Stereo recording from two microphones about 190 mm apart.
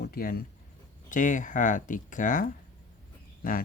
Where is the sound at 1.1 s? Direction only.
40° left (ahead or behind).